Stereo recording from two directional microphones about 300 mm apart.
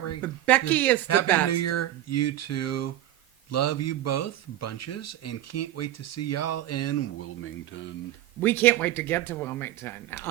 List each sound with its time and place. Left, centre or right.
0.2 s speech: centre
1.0 s speech: left
8.4 s speech: centre